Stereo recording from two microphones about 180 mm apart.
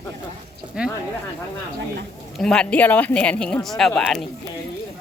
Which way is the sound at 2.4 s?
5° left (ahead or behind).